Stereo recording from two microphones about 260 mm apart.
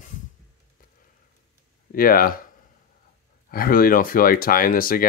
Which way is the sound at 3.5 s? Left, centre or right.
Left.